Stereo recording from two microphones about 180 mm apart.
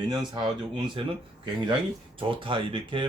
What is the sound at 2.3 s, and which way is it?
Speech, 30° right (ahead or behind).